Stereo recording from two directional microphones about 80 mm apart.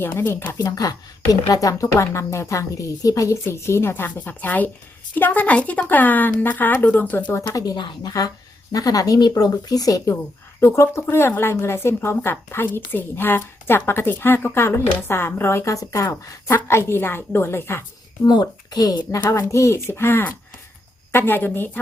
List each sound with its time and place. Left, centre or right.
0.0 s a woman's voice: left
0.5 s a woman's voice: left
7.5 s speech: left
7.8 s a woman's voice: left
8.7 s speech: left
10.6 s a woman's voice: left
16.0 s a woman's voice: left
18.3 s speech: left
19.3 s a woman's voice: left